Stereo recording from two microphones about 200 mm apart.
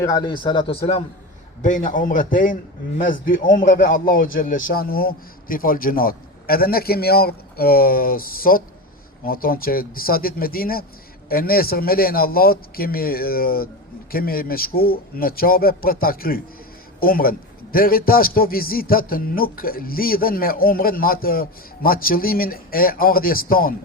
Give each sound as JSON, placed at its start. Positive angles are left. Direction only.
{"t": 0.0, "sound": "a man's voice", "side_deg": 20}
{"t": 1.6, "sound": "a man's voice", "side_deg": 40}